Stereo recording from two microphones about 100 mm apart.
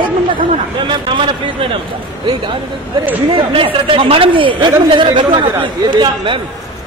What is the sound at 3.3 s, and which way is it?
A man's voice, 60° right (ahead or behind).